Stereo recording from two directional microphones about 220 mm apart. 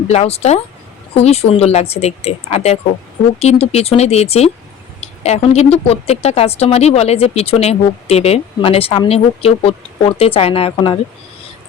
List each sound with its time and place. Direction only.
0.1 s speech: 30° left (ahead or behind)